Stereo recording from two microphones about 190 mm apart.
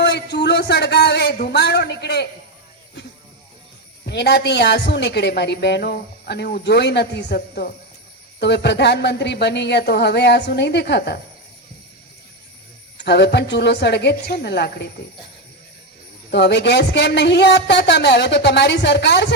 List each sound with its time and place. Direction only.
0.0 s a sound: 60° left (ahead or behind)
4.0 s a woman's voice: 60° left (ahead or behind)
13.0 s a woman's voice: 60° left (ahead or behind)
16.3 s a woman's voice: 60° left (ahead or behind)